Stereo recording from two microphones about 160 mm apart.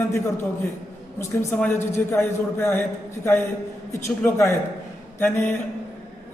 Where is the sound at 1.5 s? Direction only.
5° left (ahead or behind).